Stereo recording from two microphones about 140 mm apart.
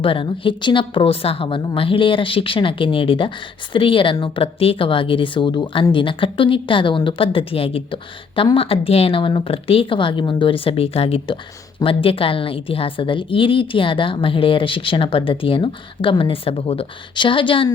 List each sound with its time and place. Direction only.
0.0 s a woman's voice: 40° left (ahead or behind)